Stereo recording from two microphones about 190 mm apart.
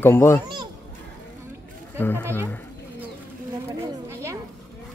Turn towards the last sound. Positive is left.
turn(degrees=-15)  # may be behind; listen again after turning